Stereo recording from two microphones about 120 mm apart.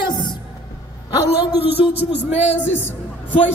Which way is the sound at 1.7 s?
60° left (ahead or behind).